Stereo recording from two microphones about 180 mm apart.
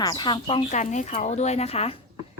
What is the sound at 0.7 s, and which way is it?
Speech, 40° left (ahead or behind).